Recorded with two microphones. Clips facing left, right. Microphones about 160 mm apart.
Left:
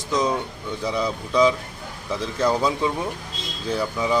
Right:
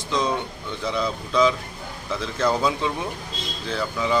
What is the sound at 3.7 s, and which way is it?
Speech, 15° left (ahead or behind).